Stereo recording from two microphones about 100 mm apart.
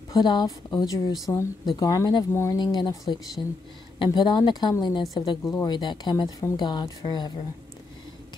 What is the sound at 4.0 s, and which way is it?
Speech, 50° left (ahead or behind).